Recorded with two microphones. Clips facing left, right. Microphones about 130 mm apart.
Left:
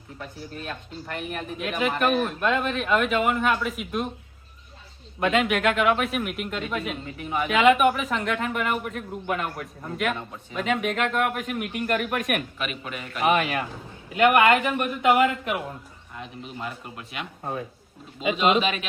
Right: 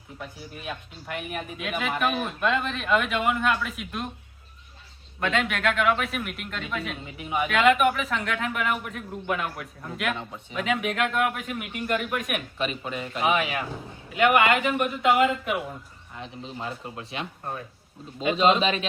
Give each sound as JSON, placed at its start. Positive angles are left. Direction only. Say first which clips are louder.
{"t": 0.2, "sound": "a man's voice", "louder": "left 3 dB", "side_deg": -10}
{"t": 5.2, "sound": "a man's voice", "louder": "left 4 dB", "side_deg": 5}
{"t": 7.0, "sound": "speech", "louder": "even", "side_deg": -10}
{"t": 7.4, "sound": "a man's voice", "louder": "left 2 dB", "side_deg": 0}
{"t": 12.5, "sound": "speech", "louder": "right 3 dB", "side_deg": -30}
{"t": 13.4, "sound": "a man's voice", "louder": "left 1 dB", "side_deg": 0}
{"t": 16.1, "sound": "speech", "louder": "even", "side_deg": -25}